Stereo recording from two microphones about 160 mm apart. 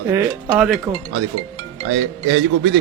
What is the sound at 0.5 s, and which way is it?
Speech, 5° right (ahead or behind).